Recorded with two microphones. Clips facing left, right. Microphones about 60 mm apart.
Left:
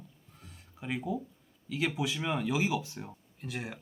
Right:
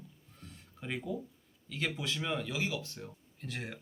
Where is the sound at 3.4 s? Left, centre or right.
Centre.